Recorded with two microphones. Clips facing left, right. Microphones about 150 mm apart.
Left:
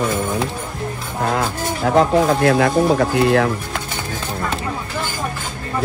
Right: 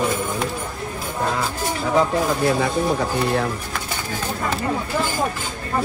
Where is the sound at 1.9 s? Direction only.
60° left (ahead or behind).